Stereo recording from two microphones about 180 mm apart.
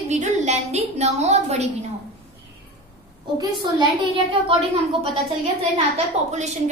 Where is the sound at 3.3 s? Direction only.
25° right (ahead or behind).